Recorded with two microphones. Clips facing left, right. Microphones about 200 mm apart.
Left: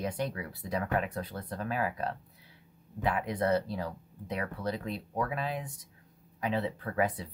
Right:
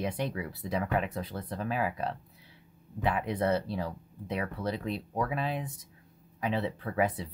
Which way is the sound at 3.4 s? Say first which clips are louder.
Left 1 dB; 5° right (ahead or behind).